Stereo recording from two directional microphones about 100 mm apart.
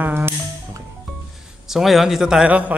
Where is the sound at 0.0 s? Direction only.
20° right (ahead or behind).